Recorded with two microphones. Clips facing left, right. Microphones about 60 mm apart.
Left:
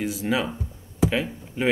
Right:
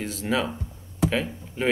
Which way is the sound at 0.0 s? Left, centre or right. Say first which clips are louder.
Left 1 dB; centre.